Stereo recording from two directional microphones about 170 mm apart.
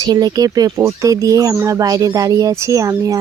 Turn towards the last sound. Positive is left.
turn(degrees=-20)  # may be behind; listen again after turning